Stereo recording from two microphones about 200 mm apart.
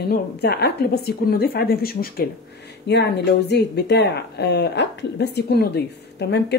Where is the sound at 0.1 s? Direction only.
55° left (ahead or behind).